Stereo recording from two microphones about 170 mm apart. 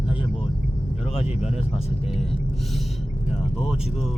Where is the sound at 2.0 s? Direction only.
Centre (ahead or behind).